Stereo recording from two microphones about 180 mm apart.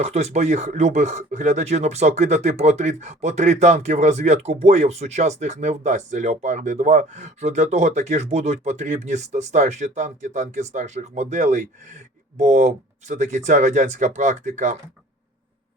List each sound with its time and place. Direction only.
0.0 s speech: 35° right (ahead or behind)